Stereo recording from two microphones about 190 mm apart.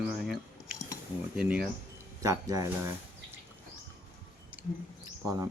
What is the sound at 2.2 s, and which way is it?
Speech, 20° right (ahead or behind).